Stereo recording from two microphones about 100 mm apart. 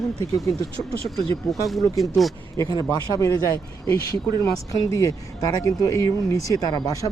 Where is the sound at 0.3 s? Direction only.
Centre (ahead or behind).